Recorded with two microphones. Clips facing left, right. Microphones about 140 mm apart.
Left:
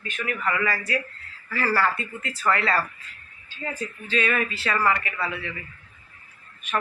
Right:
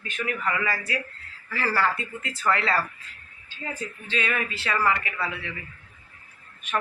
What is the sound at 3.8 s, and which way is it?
Speech, 25° right (ahead or behind).